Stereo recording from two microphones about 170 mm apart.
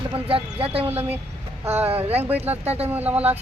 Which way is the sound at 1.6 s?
10° right (ahead or behind).